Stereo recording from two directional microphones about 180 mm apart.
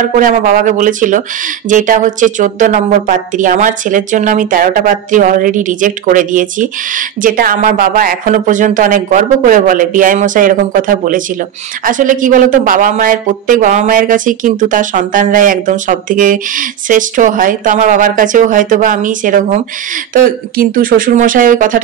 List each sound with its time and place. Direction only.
0.0 s speech: 45° right (ahead or behind)